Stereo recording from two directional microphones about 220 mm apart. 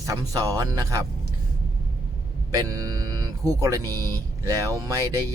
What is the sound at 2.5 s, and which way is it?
Speech, 15° right (ahead or behind).